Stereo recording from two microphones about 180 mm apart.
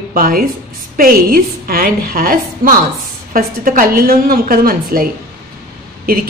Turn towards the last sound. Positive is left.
turn(degrees=-55)  # may be behind; listen again after turning